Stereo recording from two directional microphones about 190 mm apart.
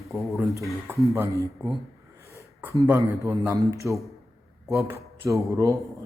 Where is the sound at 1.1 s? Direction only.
15° right (ahead or behind).